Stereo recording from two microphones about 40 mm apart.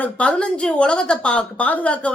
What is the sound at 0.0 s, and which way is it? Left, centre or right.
A woman's voice, left.